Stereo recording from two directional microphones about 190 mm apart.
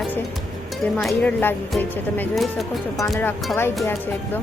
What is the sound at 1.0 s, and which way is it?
A woman's voice, 10° left (ahead or behind).